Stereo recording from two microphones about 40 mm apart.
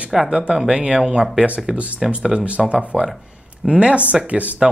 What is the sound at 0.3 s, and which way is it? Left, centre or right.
Speech, right.